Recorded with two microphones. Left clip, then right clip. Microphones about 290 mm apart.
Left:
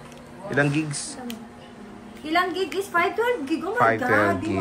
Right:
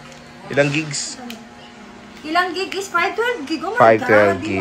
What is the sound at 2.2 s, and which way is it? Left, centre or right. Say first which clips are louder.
A woman's voice: right 4 dB; centre.